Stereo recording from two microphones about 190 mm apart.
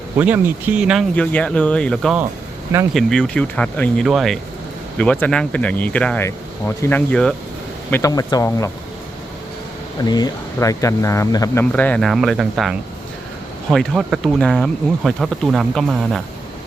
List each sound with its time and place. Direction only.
0.2 s speech: 10° right (ahead or behind)
1.1 s speech: 5° left (ahead or behind)
10.0 s speech: 20° left (ahead or behind)
11.7 s speech: 5° left (ahead or behind)